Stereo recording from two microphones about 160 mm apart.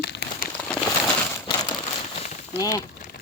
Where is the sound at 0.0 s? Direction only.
90° left.